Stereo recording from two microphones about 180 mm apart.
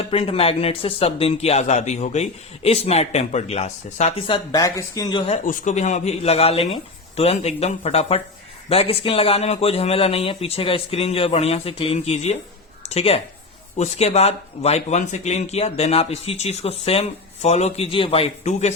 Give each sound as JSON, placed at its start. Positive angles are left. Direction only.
{"t": 0.0, "sound": "speech", "side_deg": 30}
{"t": 4.5, "sound": "speech", "side_deg": 15}
{"t": 5.5, "sound": "speech", "side_deg": 40}